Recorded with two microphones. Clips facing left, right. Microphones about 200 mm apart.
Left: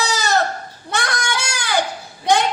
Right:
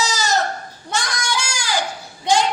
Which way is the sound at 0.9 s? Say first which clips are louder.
Left 1 dB; 60° left (ahead or behind).